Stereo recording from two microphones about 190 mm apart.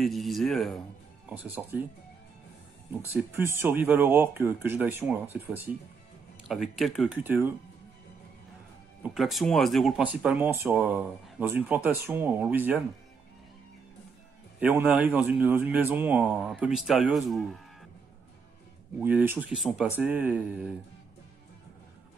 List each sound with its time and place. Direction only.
0.0 s speech: centre (ahead or behind)
2.9 s speech: 10° right (ahead or behind)
9.0 s speech: centre (ahead or behind)
14.6 s speech: 10° right (ahead or behind)
18.9 s speech: 10° right (ahead or behind)